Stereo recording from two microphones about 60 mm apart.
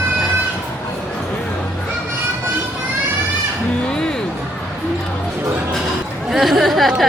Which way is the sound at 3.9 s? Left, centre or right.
Centre.